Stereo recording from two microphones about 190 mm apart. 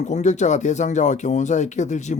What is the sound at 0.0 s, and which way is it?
Speech, 40° left (ahead or behind).